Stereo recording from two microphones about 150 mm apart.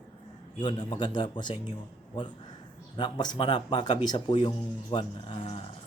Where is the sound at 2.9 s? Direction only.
30° left (ahead or behind).